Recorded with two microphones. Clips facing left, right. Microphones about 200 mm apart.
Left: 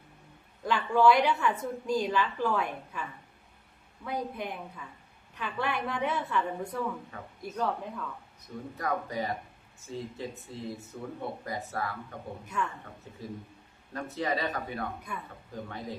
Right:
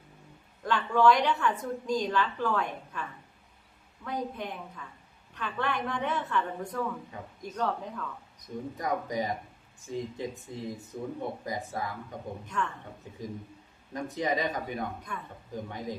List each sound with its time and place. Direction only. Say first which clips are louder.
0.6 s a woman's voice: even; 10° left (ahead or behind)
8.4 s speech: right 3 dB; 15° right (ahead or behind)
12.5 s a woman's voice: even; 10° left (ahead or behind)
13.9 s speech: right 2 dB; 15° right (ahead or behind)
15.1 s a woman's voice: even; 5° left (ahead or behind)
15.5 s speech: right 2 dB; 15° right (ahead or behind)